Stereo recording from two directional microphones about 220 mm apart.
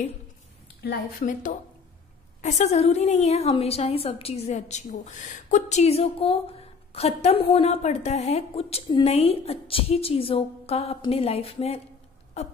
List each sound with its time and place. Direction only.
0.8 s a woman's voice: 35° left (ahead or behind)